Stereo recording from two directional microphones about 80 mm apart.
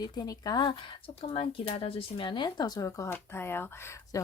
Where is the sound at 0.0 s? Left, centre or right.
Left.